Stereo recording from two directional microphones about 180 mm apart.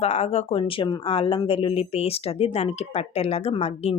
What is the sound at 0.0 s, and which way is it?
Speech, 35° left (ahead or behind).